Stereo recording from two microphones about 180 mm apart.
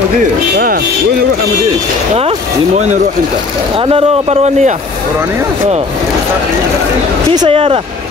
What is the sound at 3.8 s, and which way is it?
Speech, 35° right (ahead or behind).